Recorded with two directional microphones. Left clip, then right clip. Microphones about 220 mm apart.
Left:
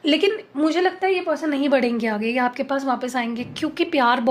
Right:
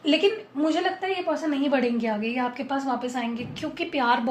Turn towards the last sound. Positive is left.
turn(degrees=50)  # may be behind; listen again after turning